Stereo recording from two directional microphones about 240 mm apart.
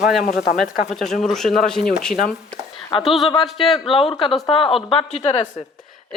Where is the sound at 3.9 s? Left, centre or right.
Left.